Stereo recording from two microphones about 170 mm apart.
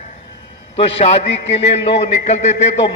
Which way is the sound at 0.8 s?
40° left (ahead or behind).